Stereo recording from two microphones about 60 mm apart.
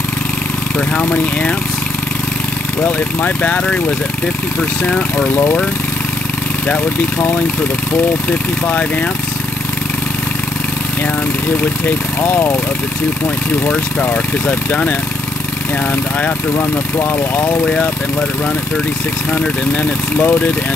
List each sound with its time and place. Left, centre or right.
0.7 s speech: left
2.8 s speech: left
5.3 s speech: left
8.3 s speech: left
14.1 s speech: left
20.2 s speech: left